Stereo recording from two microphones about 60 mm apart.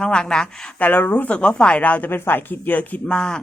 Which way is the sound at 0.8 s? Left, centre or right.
Left.